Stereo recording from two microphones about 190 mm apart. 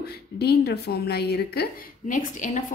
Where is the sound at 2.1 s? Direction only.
40° left (ahead or behind).